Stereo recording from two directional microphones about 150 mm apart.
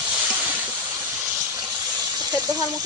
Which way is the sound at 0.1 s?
10° right (ahead or behind).